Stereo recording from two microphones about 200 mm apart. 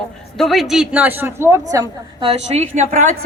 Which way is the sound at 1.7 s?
25° right (ahead or behind).